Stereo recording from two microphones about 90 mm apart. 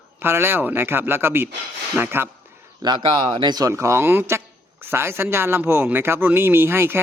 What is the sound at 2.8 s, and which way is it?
Speech, 55° right (ahead or behind).